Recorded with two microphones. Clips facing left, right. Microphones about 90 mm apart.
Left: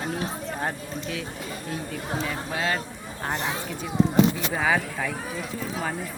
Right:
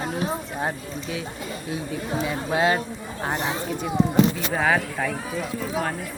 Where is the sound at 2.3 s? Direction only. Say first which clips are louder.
Right 8 dB; 20° right (ahead or behind).